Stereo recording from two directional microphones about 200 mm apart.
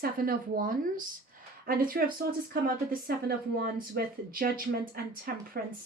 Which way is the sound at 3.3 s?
50° right (ahead or behind).